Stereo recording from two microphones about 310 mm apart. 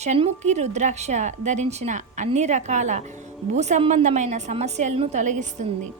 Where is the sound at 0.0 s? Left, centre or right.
Right.